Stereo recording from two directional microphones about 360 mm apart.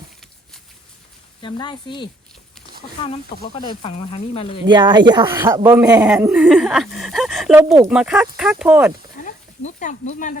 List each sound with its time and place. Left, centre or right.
1.4 s speech: centre
4.6 s speech: centre
9.2 s speech: left